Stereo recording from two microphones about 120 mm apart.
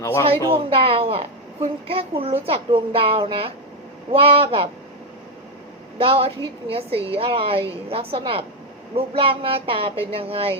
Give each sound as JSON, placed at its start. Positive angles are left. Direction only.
{"t": 0.0, "sound": "speech", "side_deg": 25}
{"t": 0.5, "sound": "a woman's voice", "side_deg": -50}
{"t": 6.0, "sound": "a woman's voice", "side_deg": -50}